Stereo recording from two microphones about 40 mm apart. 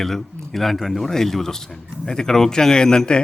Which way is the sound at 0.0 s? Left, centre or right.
Centre.